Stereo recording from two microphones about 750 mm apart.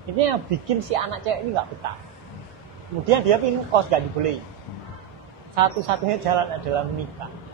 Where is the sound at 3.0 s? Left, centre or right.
Right.